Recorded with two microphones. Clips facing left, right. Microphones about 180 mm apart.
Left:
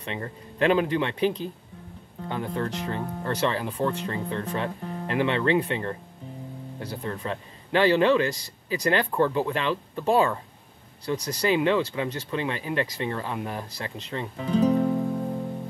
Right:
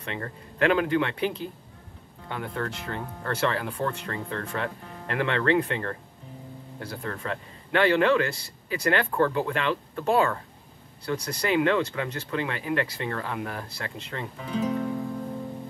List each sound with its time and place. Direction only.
0.0 s a man's voice: 20° left (ahead or behind)
8.9 s speech: 20° left (ahead or behind)
13.7 s speech: 30° left (ahead or behind)